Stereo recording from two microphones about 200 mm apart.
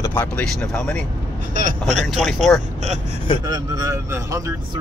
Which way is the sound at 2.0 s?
Centre (ahead or behind).